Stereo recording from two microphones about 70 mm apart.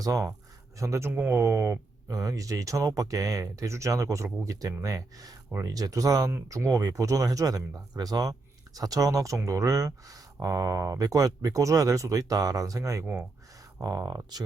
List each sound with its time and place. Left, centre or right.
0.0 s speech: right
1.1 s speech: right
1.4 s speech: right
2.0 s speech: right